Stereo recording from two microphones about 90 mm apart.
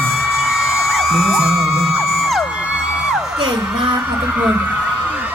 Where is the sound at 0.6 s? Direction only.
5° right (ahead or behind).